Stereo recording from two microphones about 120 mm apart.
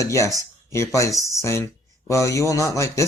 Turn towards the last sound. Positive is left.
turn(degrees=25)  # may be behind; listen again after turning